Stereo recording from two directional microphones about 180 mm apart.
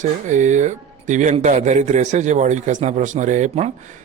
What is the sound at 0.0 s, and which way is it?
Speech, 40° right (ahead or behind).